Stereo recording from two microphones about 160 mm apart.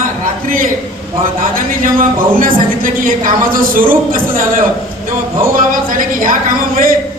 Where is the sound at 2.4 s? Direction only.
60° right (ahead or behind).